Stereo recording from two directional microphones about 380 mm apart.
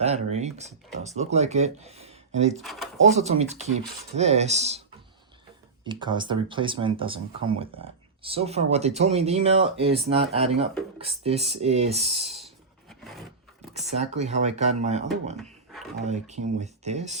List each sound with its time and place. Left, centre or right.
0.0 s speech: centre
2.6 s speech: centre
3.0 s speech: centre
5.8 s speech: centre
12.9 s roar: centre
14.0 s speech: centre
15.4 s a sound: centre
16.0 s speech: centre